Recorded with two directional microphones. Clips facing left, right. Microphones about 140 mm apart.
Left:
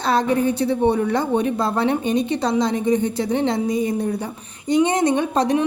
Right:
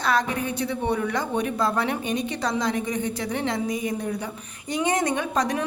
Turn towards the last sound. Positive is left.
turn(degrees=25)  # may be behind; listen again after turning